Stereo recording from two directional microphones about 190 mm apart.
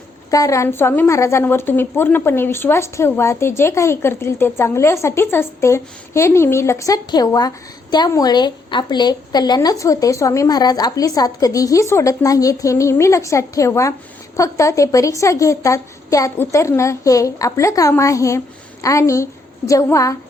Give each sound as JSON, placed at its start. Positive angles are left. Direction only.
{"t": 0.3, "sound": "a woman's voice", "side_deg": 15}